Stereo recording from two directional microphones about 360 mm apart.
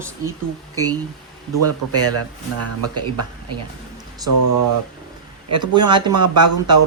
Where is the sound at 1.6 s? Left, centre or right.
Right.